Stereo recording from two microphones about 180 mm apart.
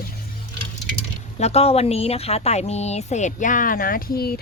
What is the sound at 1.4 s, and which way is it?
A woman's voice, 35° left (ahead or behind).